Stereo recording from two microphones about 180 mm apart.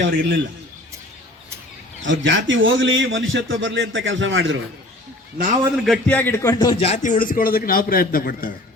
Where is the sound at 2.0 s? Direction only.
90° right.